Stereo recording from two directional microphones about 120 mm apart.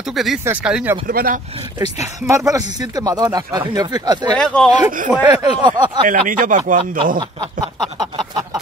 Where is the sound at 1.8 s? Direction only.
25° right (ahead or behind).